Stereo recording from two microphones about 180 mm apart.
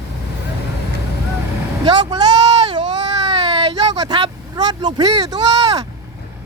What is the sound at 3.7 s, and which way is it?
Speech, 20° right (ahead or behind).